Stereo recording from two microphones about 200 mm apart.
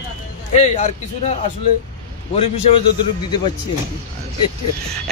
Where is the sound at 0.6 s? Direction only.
35° left (ahead or behind).